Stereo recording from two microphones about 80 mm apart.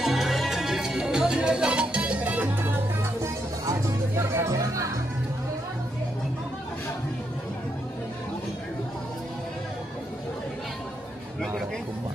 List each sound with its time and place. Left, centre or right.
0.0 s music: centre
2.6 s music: right